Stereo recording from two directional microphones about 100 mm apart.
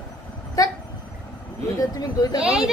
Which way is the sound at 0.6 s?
35° left (ahead or behind).